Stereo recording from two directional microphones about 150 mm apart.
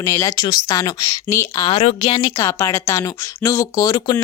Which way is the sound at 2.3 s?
20° left (ahead or behind).